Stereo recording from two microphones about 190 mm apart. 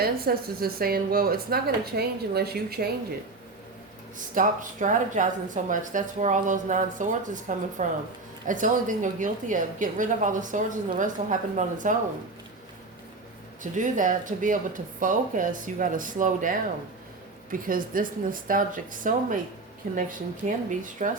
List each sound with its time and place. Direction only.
0.0 s a woman's voice: 50° right (ahead or behind)
4.4 s a woman's voice: 40° right (ahead or behind)
13.6 s a woman's voice: 40° right (ahead or behind)